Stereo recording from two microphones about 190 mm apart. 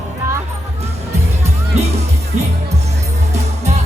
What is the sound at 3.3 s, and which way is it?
Music, 35° right (ahead or behind).